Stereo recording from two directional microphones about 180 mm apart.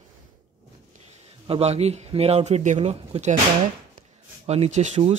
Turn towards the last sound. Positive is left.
turn(degrees=-40)  # may be behind; listen again after turning